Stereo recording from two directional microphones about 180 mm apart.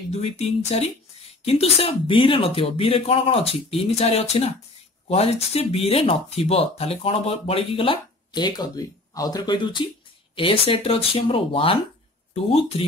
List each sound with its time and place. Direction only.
0.1 s speech: 35° left (ahead or behind)